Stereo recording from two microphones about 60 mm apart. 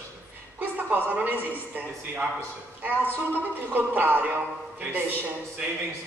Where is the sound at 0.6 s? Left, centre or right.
Right.